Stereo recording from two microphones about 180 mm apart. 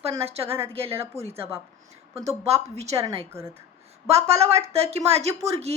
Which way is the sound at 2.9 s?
20° right (ahead or behind).